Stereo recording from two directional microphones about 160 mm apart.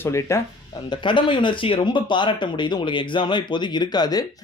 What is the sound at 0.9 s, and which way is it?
Speech, 30° left (ahead or behind).